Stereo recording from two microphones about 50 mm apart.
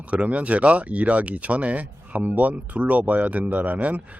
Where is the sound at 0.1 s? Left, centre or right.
Right.